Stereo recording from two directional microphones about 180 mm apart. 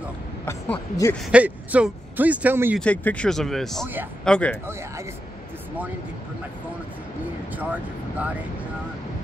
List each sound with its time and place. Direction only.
0.5 s speech: 15° left (ahead or behind)
1.3 s a man's voice: 5° right (ahead or behind)
2.8 s speech: 10° left (ahead or behind)
3.8 s a man's voice: 10° right (ahead or behind)
4.2 s speech: 5° left (ahead or behind)
7.5 s speech: 10° right (ahead or behind)